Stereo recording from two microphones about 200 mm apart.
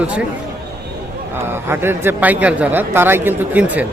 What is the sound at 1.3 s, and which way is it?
A man's voice, 10° right (ahead or behind).